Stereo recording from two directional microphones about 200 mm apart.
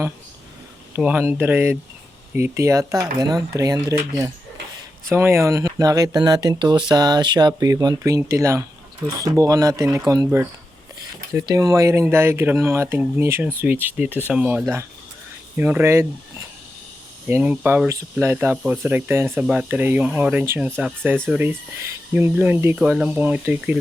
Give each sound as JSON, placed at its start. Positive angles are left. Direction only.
{"t": 0.9, "sound": "speech", "side_deg": -10}
{"t": 11.3, "sound": "speech", "side_deg": -15}
{"t": 17.2, "sound": "speech", "side_deg": -10}